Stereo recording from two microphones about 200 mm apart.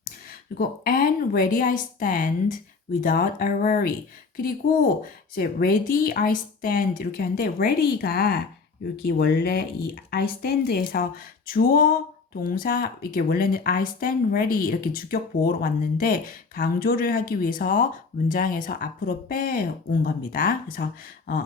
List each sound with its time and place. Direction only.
0.5 s speech: 45° left (ahead or behind)